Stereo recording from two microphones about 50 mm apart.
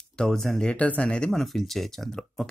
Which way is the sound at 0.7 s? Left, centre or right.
Left.